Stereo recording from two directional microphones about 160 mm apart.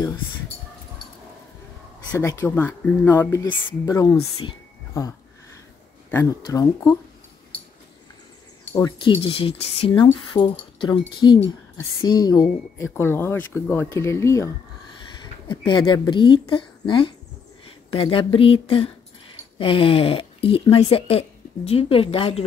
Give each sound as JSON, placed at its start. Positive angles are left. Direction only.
{"t": 2.0, "sound": "a woman's voice", "side_deg": 20}
{"t": 4.2, "sound": "speech", "side_deg": 35}
{"t": 6.4, "sound": "a woman's voice", "side_deg": 20}
{"t": 8.7, "sound": "a woman's voice", "side_deg": 25}
{"t": 15.4, "sound": "a woman's voice", "side_deg": 30}